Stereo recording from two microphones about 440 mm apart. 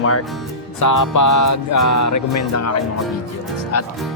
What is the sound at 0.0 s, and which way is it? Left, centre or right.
Music, left.